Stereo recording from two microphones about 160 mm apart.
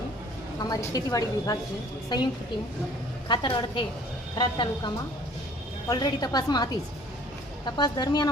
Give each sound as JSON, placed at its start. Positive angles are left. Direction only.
{"t": 0.6, "sound": "a woman's voice", "side_deg": 20}
{"t": 5.9, "sound": "a woman's voice", "side_deg": 25}